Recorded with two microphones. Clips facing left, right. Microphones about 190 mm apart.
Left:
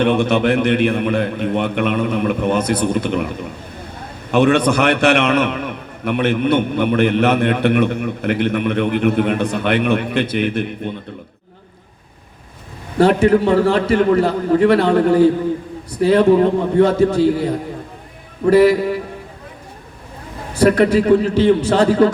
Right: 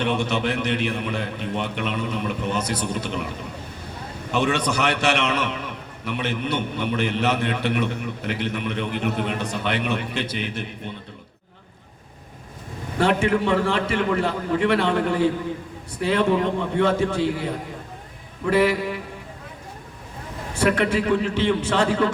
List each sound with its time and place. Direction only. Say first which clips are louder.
0.0 s a man's voice: left 8 dB; 55° left (ahead or behind)
4.3 s a man's voice: left 9 dB; 55° left (ahead or behind)
13.0 s a man's voice: left 8 dB; 40° left (ahead or behind)
20.6 s a man's voice: left 8 dB; 40° left (ahead or behind)